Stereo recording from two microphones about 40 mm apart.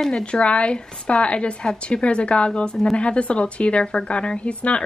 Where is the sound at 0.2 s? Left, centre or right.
Left.